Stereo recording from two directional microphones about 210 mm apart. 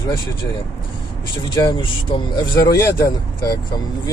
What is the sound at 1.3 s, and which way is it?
Speech, 20° left (ahead or behind).